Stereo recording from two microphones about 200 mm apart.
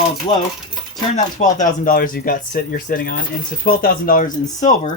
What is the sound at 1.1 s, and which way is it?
Speech, 40° left (ahead or behind).